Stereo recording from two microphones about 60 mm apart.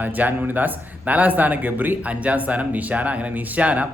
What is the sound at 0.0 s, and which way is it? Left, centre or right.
Speech, right.